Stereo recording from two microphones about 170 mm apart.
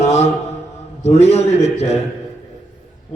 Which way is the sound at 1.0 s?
40° left (ahead or behind).